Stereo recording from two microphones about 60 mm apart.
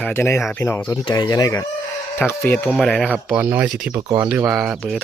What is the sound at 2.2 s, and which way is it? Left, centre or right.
Speech, left.